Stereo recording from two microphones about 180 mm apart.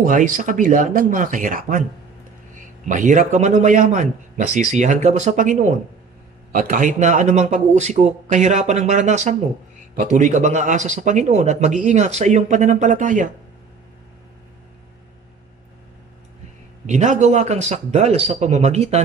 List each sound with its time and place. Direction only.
0.0 s a man's voice: 45° right (ahead or behind)
16.8 s speech: 40° right (ahead or behind)